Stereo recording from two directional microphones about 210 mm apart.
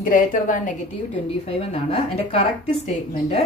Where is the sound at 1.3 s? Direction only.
30° left (ahead or behind).